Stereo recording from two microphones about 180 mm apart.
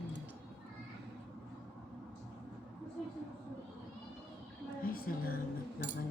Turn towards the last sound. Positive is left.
turn(degrees=55)  # may be behind; listen again after turning